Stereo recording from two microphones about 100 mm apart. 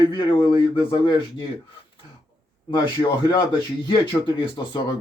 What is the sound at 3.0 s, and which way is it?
A man's voice, 45° left (ahead or behind).